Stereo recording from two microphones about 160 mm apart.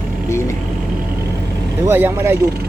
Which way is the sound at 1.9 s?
15° right (ahead or behind).